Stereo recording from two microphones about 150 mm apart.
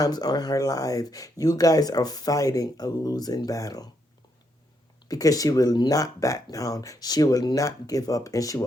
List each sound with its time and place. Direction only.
0.0 s speech: 25° left (ahead or behind)
5.0 s speech: 25° left (ahead or behind)